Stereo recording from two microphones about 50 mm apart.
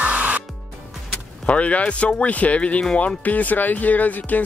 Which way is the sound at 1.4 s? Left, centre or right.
Left.